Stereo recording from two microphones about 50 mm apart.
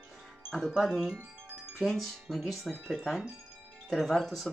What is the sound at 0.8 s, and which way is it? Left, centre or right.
Speech, centre.